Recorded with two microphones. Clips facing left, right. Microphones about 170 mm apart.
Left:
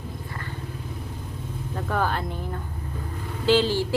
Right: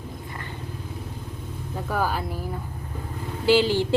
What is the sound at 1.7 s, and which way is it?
A woman's voice, 5° right (ahead or behind).